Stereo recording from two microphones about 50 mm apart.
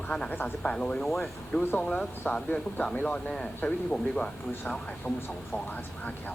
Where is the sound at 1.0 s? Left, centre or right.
Centre.